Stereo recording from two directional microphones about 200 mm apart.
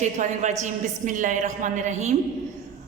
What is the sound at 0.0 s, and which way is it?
A woman's voice, 35° right (ahead or behind).